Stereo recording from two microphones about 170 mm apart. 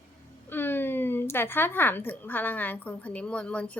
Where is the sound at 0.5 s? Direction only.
10° left (ahead or behind).